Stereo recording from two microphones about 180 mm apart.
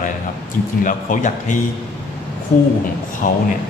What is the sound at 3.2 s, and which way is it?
Speech, 45° left (ahead or behind).